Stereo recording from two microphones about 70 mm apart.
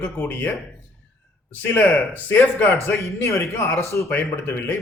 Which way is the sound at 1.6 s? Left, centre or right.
Left.